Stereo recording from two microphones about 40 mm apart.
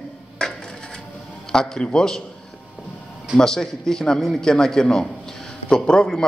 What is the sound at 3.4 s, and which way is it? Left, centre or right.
A man's voice, centre.